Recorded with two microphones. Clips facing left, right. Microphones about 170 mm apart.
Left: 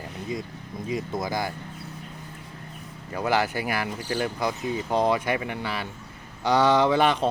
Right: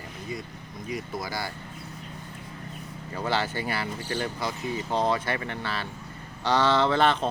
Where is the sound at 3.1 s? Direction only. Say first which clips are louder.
Left 4 dB; 10° left (ahead or behind).